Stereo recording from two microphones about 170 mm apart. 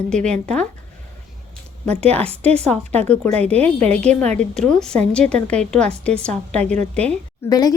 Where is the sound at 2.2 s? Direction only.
35° right (ahead or behind).